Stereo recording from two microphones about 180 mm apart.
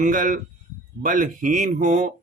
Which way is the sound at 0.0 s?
50° right (ahead or behind).